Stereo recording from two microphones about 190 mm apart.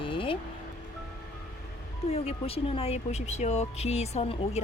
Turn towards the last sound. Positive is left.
turn(degrees=35)  # may be behind; listen again after turning